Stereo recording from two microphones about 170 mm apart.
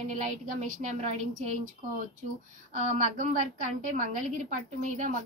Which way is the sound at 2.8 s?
45° right (ahead or behind).